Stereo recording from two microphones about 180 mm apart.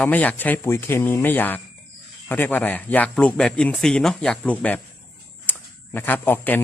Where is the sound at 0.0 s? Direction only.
10° left (ahead or behind).